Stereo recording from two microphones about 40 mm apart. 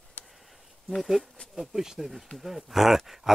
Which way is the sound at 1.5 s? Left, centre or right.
Centre.